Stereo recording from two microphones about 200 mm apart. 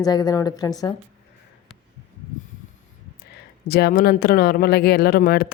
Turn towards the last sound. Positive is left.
turn(degrees=50)  # may be behind; listen again after turning